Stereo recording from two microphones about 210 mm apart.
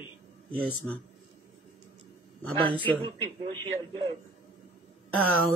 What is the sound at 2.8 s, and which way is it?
Speech, 25° right (ahead or behind).